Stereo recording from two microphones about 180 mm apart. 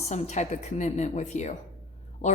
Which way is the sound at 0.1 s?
40° left (ahead or behind).